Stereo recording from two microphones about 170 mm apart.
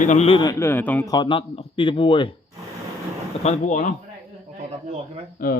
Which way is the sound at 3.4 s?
45° left (ahead or behind).